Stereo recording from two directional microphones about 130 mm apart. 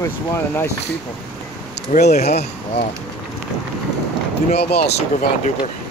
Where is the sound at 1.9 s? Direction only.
60° left (ahead or behind).